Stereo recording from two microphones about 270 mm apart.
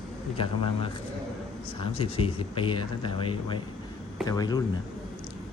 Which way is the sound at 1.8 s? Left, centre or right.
Left.